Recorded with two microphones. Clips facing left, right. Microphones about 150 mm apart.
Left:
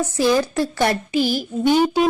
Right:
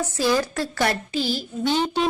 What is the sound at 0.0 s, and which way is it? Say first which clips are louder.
Speech: left 4 dB; 20° left (ahead or behind).